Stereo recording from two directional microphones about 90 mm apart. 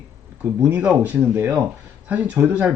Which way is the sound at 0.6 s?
20° right (ahead or behind).